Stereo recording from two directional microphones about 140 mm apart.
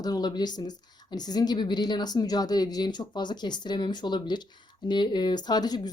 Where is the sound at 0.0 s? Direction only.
30° left (ahead or behind).